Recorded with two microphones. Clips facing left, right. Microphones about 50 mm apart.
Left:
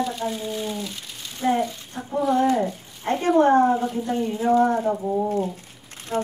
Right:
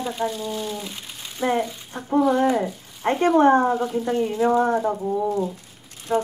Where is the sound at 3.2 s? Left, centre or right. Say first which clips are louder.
Even; right.